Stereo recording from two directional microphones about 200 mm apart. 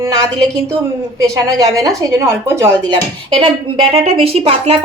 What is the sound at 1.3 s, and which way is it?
Speech, 15° right (ahead or behind).